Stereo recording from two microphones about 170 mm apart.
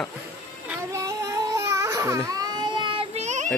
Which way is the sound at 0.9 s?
20° right (ahead or behind).